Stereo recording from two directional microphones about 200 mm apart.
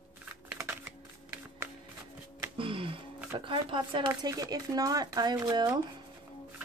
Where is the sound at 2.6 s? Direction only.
25° right (ahead or behind).